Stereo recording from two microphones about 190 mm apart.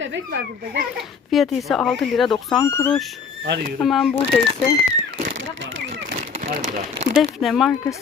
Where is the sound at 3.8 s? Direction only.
Centre (ahead or behind).